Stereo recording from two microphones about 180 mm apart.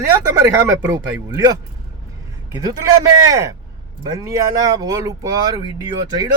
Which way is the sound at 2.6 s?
20° right (ahead or behind).